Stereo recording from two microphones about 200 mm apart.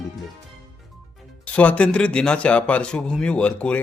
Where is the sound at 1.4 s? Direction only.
5° left (ahead or behind).